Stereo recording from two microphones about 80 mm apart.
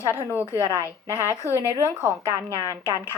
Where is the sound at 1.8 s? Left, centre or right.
Left.